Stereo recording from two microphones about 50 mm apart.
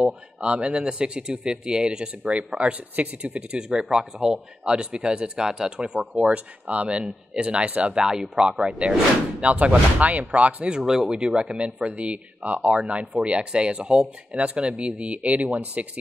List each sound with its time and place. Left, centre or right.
0.0 s speech: right
5.8 s speech: right